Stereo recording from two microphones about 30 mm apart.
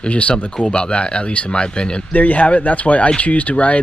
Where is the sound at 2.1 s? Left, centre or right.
Left.